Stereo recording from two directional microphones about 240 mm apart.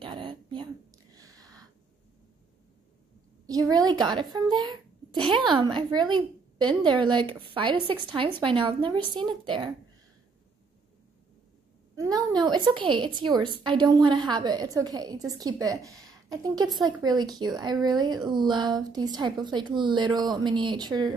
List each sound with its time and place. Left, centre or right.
0.0 s a sound: right
3.4 s a child's voice: centre
11.9 s a woman's voice: centre